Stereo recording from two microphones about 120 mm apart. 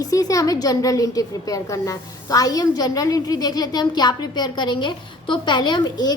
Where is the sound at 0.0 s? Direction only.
30° left (ahead or behind).